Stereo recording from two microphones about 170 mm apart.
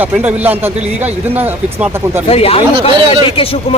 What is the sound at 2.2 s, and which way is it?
A man's voice, 35° left (ahead or behind).